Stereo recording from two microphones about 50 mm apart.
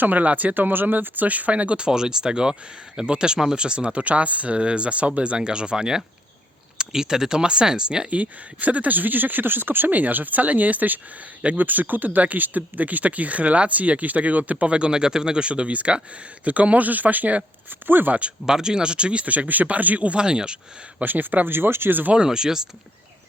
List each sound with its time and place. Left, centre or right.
0.0 s speech: right; by 8.0 s centre
8.1 s speech: right
18.4 s speech: centre
21.0 s speech: right
22.1 s speech: centre